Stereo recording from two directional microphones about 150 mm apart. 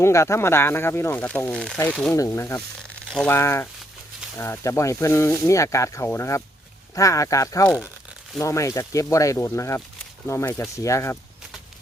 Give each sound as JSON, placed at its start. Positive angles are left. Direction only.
{"t": 0.0, "sound": "speech", "side_deg": 20}
{"t": 2.1, "sound": "speech", "side_deg": 20}